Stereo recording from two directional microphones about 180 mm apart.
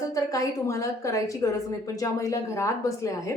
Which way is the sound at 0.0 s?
20° left (ahead or behind).